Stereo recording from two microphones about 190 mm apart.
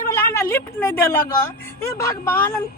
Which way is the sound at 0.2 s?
10° left (ahead or behind).